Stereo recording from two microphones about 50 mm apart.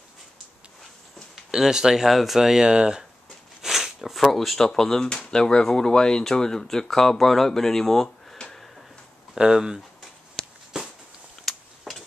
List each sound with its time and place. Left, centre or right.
1.3 s speech: centre
3.6 s a sound: centre
4.6 s speech: centre
9.3 s speech: centre
10.7 s a sound: centre
11.4 s tick-tock: centre